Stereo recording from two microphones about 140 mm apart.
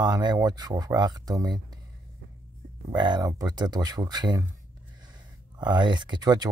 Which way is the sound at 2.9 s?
30° right (ahead or behind).